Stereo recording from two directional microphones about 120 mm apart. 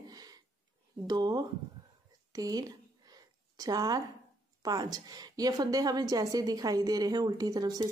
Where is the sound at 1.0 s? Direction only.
35° right (ahead or behind).